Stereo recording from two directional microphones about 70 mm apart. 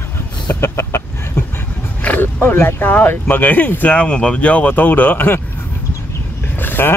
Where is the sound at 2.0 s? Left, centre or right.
Left.